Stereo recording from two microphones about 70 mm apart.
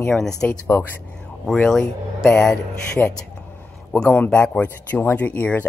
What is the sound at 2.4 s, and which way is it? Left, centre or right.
Speech, centre.